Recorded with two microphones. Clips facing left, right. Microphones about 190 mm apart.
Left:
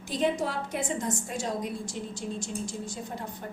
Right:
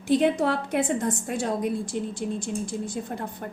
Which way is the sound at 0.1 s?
60° right (ahead or behind).